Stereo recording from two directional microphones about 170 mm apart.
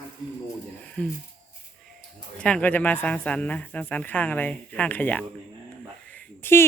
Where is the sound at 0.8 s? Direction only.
5° left (ahead or behind).